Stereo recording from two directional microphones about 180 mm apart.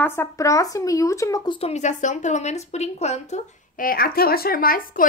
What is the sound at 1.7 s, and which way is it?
A woman's voice, 40° left (ahead or behind).